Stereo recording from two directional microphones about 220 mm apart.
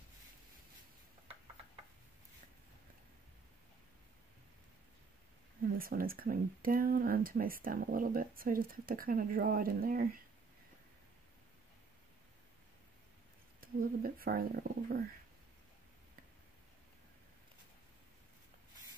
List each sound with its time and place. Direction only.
5.8 s speech: 40° right (ahead or behind)
13.6 s speech: 40° right (ahead or behind)